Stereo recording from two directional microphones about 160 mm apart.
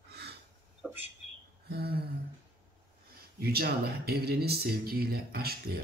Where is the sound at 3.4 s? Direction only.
75° right (ahead or behind).